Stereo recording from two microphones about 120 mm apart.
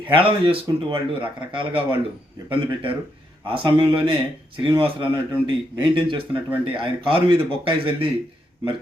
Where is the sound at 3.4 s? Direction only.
45° right (ahead or behind).